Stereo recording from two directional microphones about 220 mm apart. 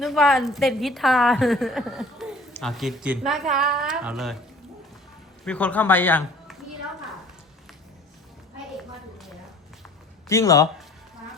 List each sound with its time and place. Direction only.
0.0 s a woman's voice: centre (ahead or behind)
5.5 s a man's voice: 5° left (ahead or behind)
10.2 s speech: 15° left (ahead or behind)